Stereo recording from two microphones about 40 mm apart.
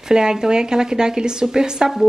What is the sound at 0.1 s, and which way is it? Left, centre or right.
Speech, centre.